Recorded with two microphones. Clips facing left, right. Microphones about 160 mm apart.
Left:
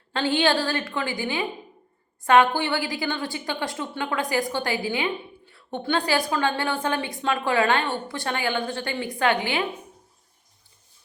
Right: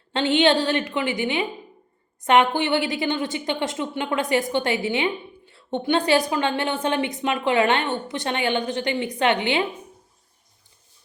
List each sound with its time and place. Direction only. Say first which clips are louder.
0.1 s a woman's voice: right 3 dB; 20° right (ahead or behind)